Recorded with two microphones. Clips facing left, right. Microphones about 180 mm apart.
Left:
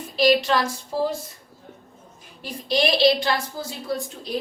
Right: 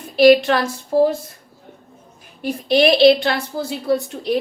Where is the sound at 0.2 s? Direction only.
60° right (ahead or behind).